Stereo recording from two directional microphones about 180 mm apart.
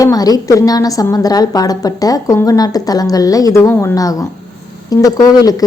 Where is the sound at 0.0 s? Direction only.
20° left (ahead or behind).